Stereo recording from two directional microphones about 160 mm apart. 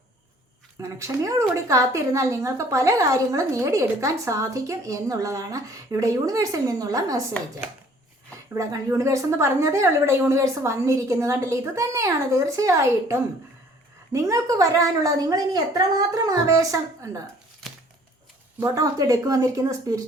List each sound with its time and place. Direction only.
0.8 s a woman's voice: 20° right (ahead or behind)
8.5 s a woman's voice: 20° right (ahead or behind)
18.6 s a woman's voice: 20° right (ahead or behind)